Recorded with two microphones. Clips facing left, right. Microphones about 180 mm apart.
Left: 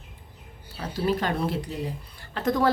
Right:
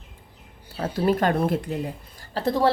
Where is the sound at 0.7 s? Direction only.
50° right (ahead or behind).